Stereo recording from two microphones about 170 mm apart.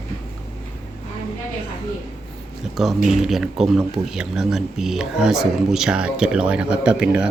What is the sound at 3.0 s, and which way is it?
Speech, centre (ahead or behind).